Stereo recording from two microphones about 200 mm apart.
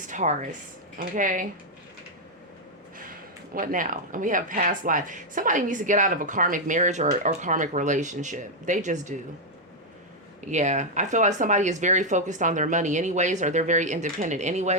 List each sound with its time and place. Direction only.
0.0 s speech: 40° right (ahead or behind)
3.5 s speech: 40° right (ahead or behind)
10.4 s speech: 35° right (ahead or behind)